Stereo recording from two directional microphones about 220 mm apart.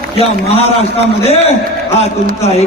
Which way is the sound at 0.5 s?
25° left (ahead or behind).